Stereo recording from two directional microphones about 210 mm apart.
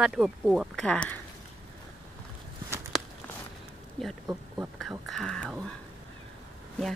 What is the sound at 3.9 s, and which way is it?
Speech, centre (ahead or behind).